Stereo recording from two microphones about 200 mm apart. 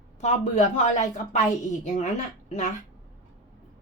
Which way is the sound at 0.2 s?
35° left (ahead or behind).